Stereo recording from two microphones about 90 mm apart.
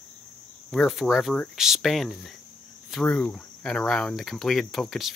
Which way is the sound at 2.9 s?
5° left (ahead or behind).